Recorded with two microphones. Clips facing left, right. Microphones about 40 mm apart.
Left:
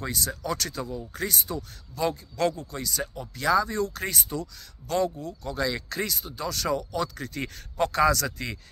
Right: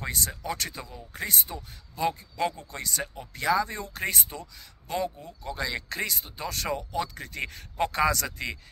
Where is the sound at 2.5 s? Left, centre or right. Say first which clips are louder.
Left 2 dB; right.